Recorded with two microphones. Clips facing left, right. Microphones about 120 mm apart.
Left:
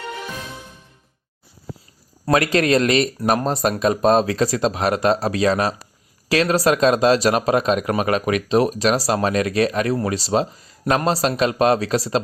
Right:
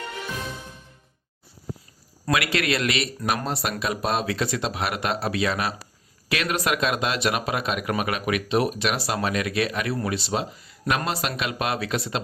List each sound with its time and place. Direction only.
2.2 s speech: 35° left (ahead or behind)